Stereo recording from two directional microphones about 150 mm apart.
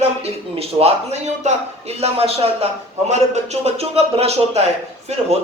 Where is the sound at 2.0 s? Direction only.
40° right (ahead or behind).